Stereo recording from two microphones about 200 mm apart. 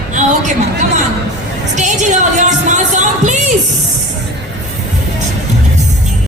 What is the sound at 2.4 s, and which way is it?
Music, 35° right (ahead or behind).